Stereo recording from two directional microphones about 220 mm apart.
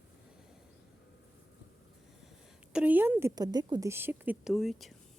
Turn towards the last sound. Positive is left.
turn(degrees=0)  # may be behind; listen again after turning